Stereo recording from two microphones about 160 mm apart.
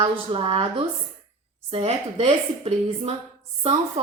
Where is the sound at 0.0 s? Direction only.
35° right (ahead or behind).